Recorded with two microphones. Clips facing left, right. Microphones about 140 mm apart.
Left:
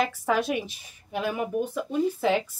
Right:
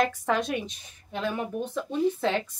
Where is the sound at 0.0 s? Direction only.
5° left (ahead or behind).